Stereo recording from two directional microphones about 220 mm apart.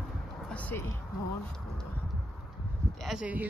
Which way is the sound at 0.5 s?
5° left (ahead or behind).